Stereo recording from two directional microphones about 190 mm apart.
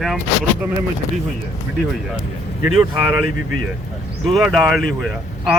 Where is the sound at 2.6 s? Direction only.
10° right (ahead or behind).